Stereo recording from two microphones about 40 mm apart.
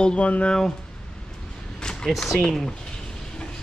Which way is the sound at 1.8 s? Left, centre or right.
Centre.